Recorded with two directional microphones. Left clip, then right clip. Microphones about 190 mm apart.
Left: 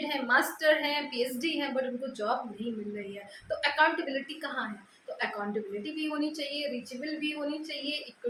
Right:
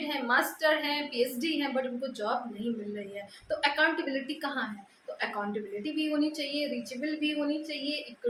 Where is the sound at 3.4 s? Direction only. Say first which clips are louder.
Left 1 dB; 5° right (ahead or behind).